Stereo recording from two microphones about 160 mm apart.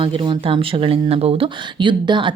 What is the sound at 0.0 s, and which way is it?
Speech, 30° right (ahead or behind).